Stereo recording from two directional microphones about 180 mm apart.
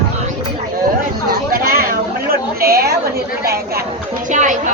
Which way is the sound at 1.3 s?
55° right (ahead or behind).